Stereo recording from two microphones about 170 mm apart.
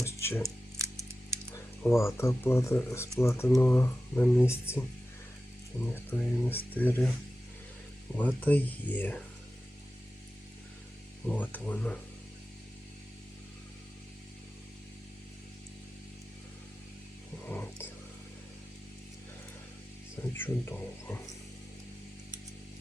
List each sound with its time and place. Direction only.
0.0 s music: 15° left (ahead or behind)
0.4 s a sound: 15° right (ahead or behind)
1.5 s speech: 15° left (ahead or behind)
8.4 s speech: 10° left (ahead or behind)
11.3 s speech: 10° left (ahead or behind)
17.5 s a sound: 10° left (ahead or behind)
20.3 s speech: 10° left (ahead or behind)